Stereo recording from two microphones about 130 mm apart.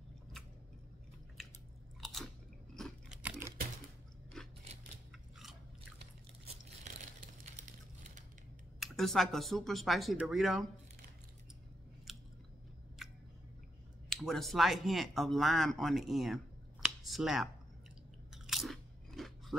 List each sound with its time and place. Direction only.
2.0 s biting: centre (ahead or behind)
2.7 s crunch: 5° left (ahead or behind)
3.2 s a sound: 10° right (ahead or behind)
4.4 s scissors: 5° left (ahead or behind)
6.4 s crunch: 55° right (ahead or behind)
7.2 s a sound: 85° right
8.7 s speech: centre (ahead or behind)
12.1 s chewing: centre (ahead or behind)
13.0 s a sound: centre (ahead or behind)
14.0 s speech: centre (ahead or behind)
18.3 s crunch: centre (ahead or behind)